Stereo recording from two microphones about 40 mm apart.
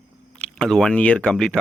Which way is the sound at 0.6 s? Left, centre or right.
Centre.